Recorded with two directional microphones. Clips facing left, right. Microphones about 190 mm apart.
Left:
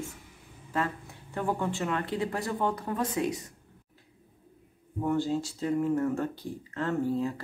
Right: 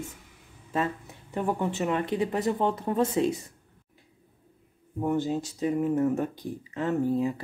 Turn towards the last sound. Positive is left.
turn(degrees=-15)  # may be behind; listen again after turning